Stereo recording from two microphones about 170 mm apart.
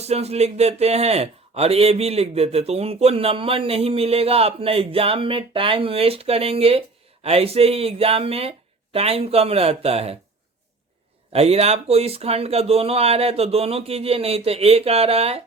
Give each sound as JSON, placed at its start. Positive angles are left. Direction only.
{"t": 0.0, "sound": "speech", "side_deg": -40}
{"t": 11.3, "sound": "speech", "side_deg": -35}